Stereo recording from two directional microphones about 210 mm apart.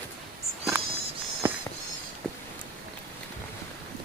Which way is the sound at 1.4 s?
10° right (ahead or behind).